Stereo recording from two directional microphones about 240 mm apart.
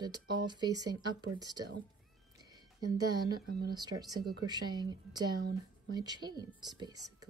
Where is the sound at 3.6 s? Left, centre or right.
Centre.